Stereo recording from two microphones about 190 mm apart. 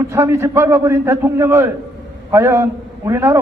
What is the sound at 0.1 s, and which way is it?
A man's voice, 15° right (ahead or behind).